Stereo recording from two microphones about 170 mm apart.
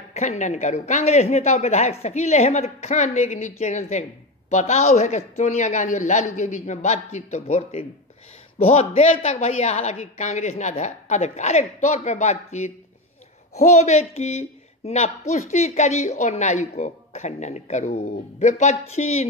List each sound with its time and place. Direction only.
0.1 s speech: 40° left (ahead or behind)